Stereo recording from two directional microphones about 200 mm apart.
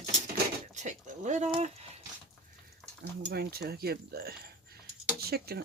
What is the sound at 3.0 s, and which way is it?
Speech, 55° right (ahead or behind).